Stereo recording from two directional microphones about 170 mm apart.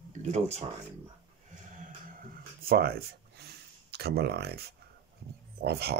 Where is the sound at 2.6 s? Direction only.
65° right (ahead or behind).